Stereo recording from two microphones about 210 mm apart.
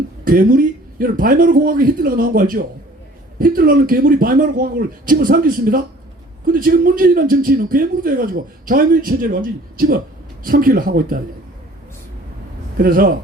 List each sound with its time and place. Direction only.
0.3 s a man's voice: 40° right (ahead or behind)
12.7 s a man's voice: 45° right (ahead or behind)